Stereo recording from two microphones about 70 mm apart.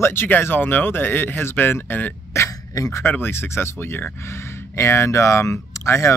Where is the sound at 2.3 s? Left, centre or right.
Left.